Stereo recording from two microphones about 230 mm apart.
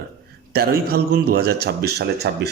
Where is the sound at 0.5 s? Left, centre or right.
Right.